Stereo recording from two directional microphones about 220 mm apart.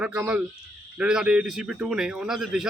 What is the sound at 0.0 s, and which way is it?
Speech, 5° right (ahead or behind).